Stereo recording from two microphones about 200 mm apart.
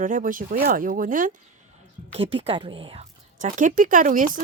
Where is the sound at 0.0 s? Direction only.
40° right (ahead or behind).